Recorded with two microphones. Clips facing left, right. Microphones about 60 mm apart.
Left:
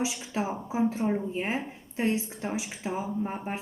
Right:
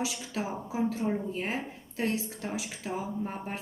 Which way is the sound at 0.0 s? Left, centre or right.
Left.